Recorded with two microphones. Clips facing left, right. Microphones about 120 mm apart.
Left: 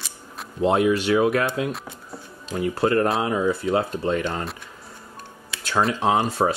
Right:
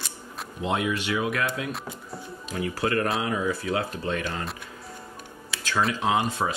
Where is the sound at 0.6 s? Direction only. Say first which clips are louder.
Left 8 dB; 35° left (ahead or behind).